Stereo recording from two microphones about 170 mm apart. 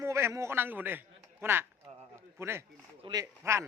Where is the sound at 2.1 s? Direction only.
15° right (ahead or behind).